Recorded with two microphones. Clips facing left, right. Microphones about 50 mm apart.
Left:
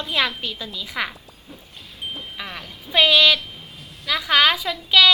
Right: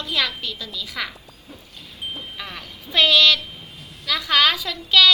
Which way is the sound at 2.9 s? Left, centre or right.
Centre.